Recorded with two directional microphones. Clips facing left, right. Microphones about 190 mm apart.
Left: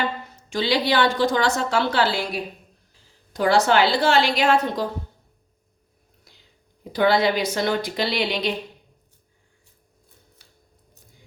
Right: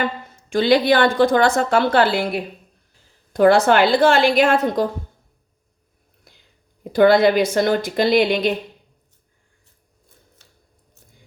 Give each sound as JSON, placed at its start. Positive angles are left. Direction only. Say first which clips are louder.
{"t": 0.5, "sound": "a woman's voice", "louder": "right 6 dB", "side_deg": -50}
{"t": 6.3, "sound": "whispering", "louder": "right 3 dB", "side_deg": -55}
{"t": 6.9, "sound": "a woman's voice", "louder": "right 6 dB", "side_deg": -50}